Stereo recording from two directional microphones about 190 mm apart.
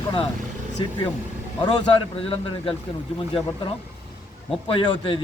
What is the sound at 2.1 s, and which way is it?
Speech, 30° left (ahead or behind).